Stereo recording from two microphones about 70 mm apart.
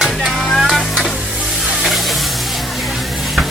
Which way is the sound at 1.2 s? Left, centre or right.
Centre.